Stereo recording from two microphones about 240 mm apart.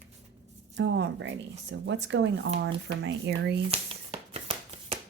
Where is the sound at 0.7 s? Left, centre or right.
Right.